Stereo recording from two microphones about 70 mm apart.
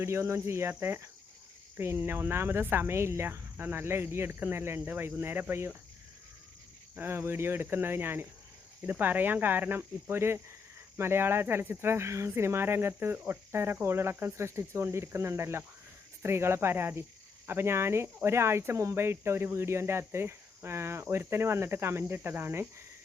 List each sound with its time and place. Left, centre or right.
0.0 s speech: right
6.9 s speech: right